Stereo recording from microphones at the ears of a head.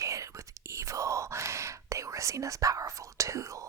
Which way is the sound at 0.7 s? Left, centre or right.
Right.